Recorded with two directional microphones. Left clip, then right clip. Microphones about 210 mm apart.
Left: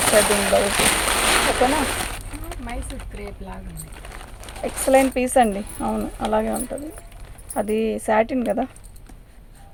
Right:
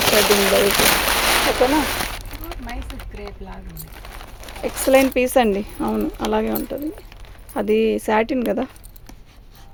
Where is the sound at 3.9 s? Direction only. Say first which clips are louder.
Right 2 dB; 15° right (ahead or behind).